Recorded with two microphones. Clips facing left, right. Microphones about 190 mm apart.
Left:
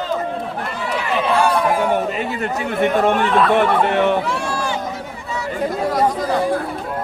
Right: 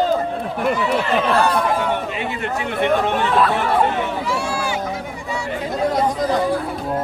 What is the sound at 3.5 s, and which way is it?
Speech, 65° left (ahead or behind).